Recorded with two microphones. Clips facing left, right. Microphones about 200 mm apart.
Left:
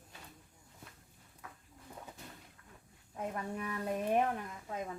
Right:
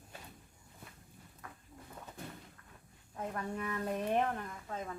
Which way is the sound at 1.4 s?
5° left (ahead or behind).